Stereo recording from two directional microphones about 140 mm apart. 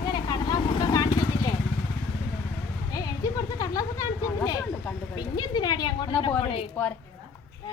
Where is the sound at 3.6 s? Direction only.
25° left (ahead or behind).